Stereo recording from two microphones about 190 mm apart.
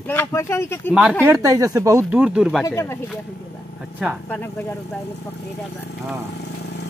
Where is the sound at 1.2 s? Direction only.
15° right (ahead or behind).